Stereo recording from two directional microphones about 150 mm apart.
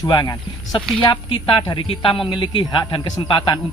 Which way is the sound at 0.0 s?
25° left (ahead or behind).